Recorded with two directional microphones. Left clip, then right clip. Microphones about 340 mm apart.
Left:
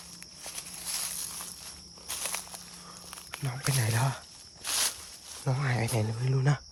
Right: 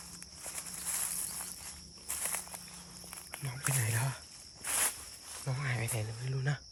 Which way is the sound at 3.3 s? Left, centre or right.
Centre.